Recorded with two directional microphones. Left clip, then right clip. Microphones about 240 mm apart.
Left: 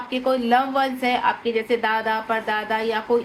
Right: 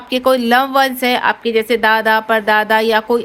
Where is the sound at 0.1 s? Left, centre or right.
Right.